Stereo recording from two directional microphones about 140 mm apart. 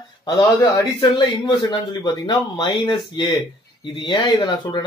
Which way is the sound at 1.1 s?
35° left (ahead or behind).